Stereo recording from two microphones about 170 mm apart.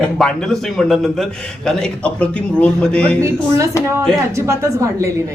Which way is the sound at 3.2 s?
20° right (ahead or behind).